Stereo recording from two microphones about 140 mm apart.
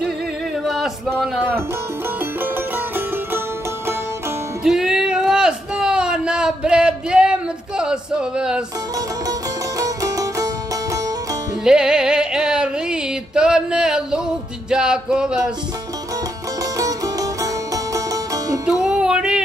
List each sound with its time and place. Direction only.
0.7 s a sound: centre (ahead or behind)
4.6 s a sound: 5° right (ahead or behind)
9.8 s music: 25° right (ahead or behind)
11.6 s music: 5° right (ahead or behind)
16.7 s music: 25° right (ahead or behind)
18.7 s music: 5° right (ahead or behind)